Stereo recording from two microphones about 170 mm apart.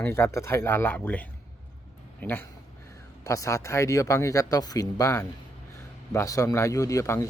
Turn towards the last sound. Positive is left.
turn(degrees=15)  # may be behind; listen again after turning